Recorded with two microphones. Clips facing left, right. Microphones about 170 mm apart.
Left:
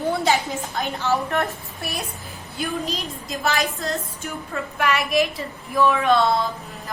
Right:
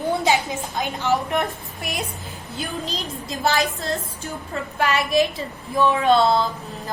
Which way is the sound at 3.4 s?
30° right (ahead or behind).